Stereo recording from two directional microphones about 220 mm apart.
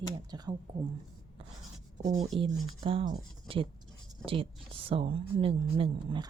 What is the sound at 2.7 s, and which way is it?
Speech, 20° right (ahead or behind).